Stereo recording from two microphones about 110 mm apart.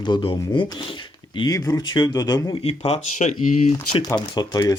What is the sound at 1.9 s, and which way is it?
Speech, 40° left (ahead or behind).